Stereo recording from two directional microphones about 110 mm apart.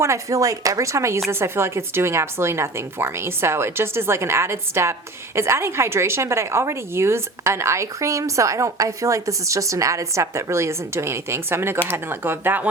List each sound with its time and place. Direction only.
0.0 s a woman's voice: 30° right (ahead or behind)